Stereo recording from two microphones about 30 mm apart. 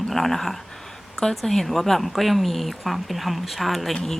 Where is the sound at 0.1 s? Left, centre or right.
Centre.